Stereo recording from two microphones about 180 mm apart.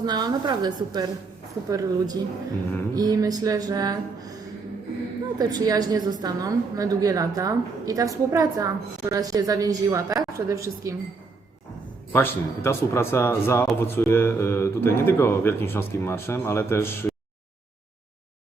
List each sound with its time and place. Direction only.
0.0 s a woman's voice: 25° right (ahead or behind)
5.4 s a woman's voice: 20° right (ahead or behind)
12.1 s speech: 15° left (ahead or behind)